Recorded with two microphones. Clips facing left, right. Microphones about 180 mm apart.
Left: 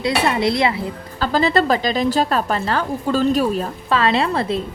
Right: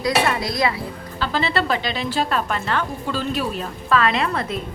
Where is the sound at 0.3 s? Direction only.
25° left (ahead or behind).